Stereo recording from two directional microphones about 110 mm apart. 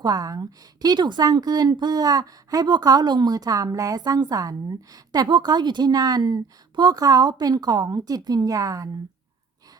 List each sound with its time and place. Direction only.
0.0 s a woman's voice: 35° right (ahead or behind)